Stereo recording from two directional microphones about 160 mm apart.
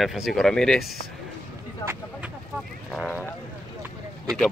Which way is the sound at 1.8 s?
20° left (ahead or behind).